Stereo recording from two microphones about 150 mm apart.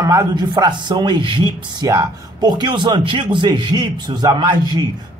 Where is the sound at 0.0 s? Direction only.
20° right (ahead or behind).